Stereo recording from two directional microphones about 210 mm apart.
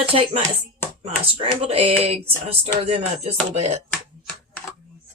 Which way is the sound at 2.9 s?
30° right (ahead or behind).